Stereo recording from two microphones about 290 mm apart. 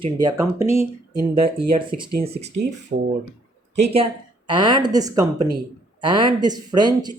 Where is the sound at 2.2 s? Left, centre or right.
Right.